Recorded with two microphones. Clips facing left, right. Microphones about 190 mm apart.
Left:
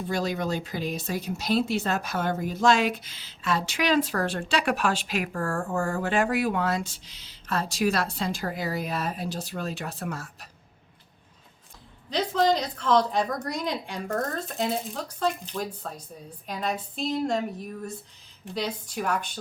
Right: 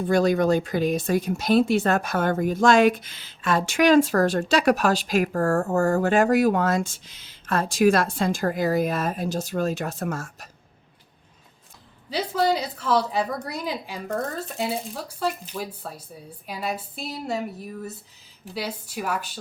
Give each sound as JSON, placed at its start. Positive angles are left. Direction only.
{"t": 0.1, "sound": "speech", "side_deg": -50}
{"t": 12.1, "sound": "a woman's voice", "side_deg": -5}